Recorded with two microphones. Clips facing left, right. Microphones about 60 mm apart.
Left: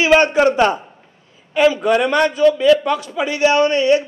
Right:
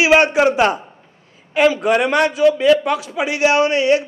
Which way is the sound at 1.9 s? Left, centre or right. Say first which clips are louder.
Even; centre.